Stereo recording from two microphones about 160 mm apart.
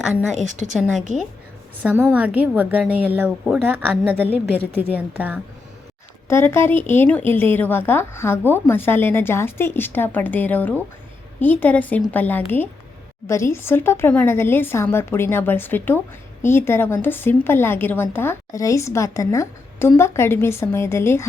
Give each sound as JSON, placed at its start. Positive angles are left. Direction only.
{"t": 0.3, "sound": "a woman's voice", "side_deg": -50}
{"t": 1.8, "sound": "a woman's voice", "side_deg": -10}
{"t": 6.2, "sound": "a woman's voice", "side_deg": 15}